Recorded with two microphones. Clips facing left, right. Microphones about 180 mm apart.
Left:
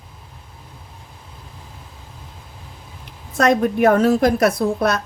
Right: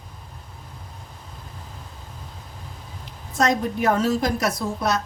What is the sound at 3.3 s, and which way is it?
A woman's voice, 60° left (ahead or behind).